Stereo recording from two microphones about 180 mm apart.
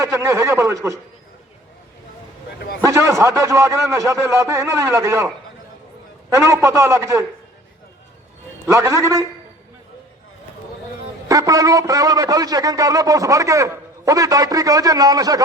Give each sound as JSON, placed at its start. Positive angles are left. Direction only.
{"t": 0.0, "sound": "a man's voice", "side_deg": -15}
{"t": 2.8, "sound": "a man's voice", "side_deg": -15}
{"t": 6.3, "sound": "a man's voice", "side_deg": -15}
{"t": 8.6, "sound": "a man's voice", "side_deg": -15}
{"t": 11.3, "sound": "a man's voice", "side_deg": -20}